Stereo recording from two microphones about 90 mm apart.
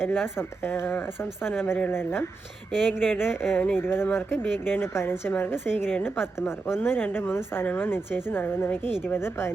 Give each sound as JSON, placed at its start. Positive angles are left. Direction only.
{"t": 0.3, "sound": "a woman's voice", "side_deg": 25}
{"t": 2.7, "sound": "speech", "side_deg": -5}
{"t": 3.6, "sound": "a woman's voice", "side_deg": 20}